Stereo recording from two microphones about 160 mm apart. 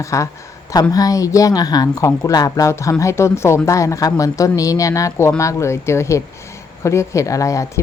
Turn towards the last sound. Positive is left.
turn(degrees=20)  # may be behind; listen again after turning